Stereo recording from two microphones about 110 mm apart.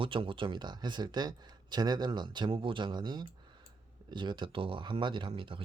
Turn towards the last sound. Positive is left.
turn(degrees=-50)  # may be behind; listen again after turning